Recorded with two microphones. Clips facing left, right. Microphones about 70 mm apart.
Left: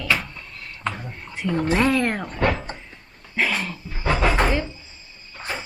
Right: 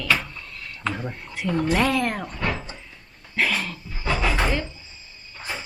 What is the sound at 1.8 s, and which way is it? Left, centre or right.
Speech, left.